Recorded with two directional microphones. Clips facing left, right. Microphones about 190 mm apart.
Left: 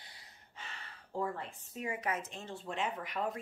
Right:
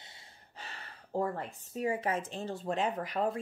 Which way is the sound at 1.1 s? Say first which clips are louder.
Right 4 dB; 40° right (ahead or behind).